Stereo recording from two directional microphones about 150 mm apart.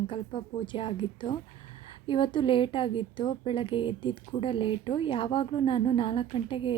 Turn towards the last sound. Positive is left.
turn(degrees=35)  # may be behind; listen again after turning